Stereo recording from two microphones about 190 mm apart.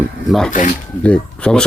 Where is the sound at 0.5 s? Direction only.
45° left (ahead or behind).